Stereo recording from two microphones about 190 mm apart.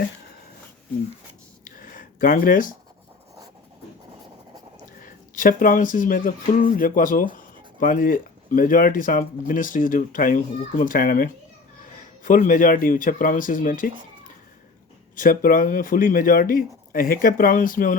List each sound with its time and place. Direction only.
1.8 s a sound: 45° left (ahead or behind)
4.9 s a man's voice: 45° left (ahead or behind)
15.1 s speech: 45° left (ahead or behind)